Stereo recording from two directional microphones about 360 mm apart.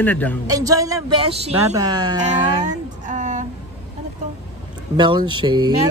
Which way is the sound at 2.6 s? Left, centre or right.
Right.